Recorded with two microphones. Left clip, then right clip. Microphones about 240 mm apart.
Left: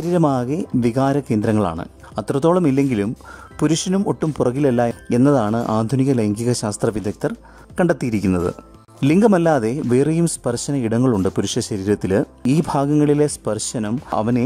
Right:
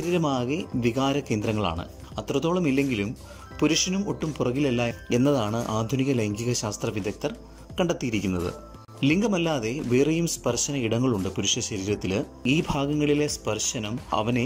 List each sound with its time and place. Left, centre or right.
0.0 s speech: left